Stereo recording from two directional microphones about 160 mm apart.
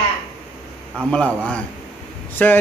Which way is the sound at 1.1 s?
5° left (ahead or behind).